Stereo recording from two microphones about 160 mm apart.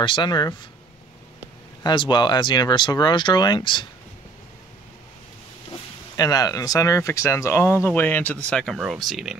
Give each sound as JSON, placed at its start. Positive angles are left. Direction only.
{"t": 0.0, "sound": "speech", "side_deg": 30}
{"t": 1.8, "sound": "speech", "side_deg": 25}
{"t": 6.1, "sound": "speech", "side_deg": 25}